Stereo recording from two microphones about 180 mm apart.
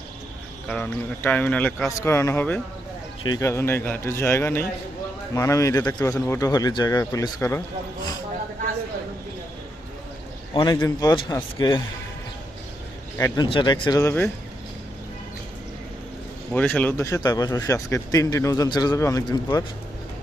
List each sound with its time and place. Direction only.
0.7 s speech: 10° left (ahead or behind)
10.5 s speech: 25° left (ahead or behind)
13.1 s speech: 20° left (ahead or behind)
14.0 s speech: 15° left (ahead or behind)
16.5 s speech: 10° left (ahead or behind)